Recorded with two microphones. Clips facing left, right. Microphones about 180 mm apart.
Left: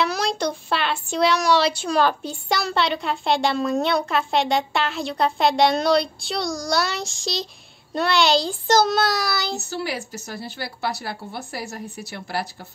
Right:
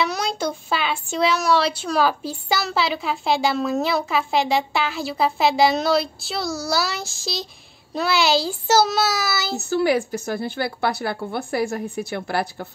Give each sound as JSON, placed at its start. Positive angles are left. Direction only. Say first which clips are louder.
{"t": 0.0, "sound": "speech", "louder": "left 1 dB", "side_deg": 0}
{"t": 9.7, "sound": "a woman's voice", "louder": "right 9 dB", "side_deg": -55}